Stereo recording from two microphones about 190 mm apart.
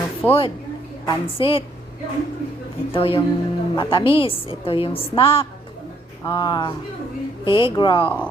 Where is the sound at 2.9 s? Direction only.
30° left (ahead or behind).